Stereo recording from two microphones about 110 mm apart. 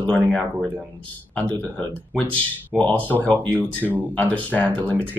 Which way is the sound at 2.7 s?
15° left (ahead or behind).